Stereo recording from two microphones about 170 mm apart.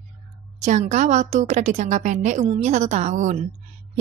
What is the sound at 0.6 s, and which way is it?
A woman's voice, 45° right (ahead or behind).